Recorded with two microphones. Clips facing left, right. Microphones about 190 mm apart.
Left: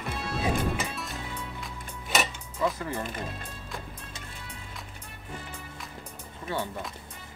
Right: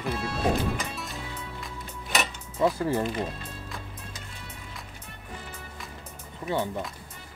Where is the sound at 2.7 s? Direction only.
30° right (ahead or behind).